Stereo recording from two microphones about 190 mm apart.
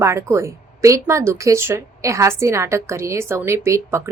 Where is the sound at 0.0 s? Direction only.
15° right (ahead or behind).